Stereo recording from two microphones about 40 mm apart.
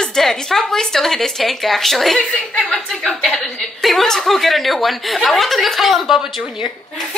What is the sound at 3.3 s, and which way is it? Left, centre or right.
Speech, centre.